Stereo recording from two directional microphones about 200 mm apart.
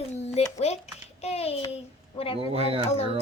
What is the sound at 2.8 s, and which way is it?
Speech, 30° left (ahead or behind).